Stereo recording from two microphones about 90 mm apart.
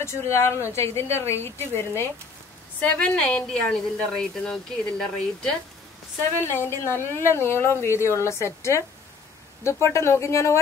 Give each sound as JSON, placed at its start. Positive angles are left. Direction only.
{"t": 0.0, "sound": "a woman's voice", "side_deg": 35}
{"t": 2.8, "sound": "a woman's voice", "side_deg": 15}
{"t": 6.4, "sound": "speech", "side_deg": 25}
{"t": 9.8, "sound": "a woman's voice", "side_deg": 30}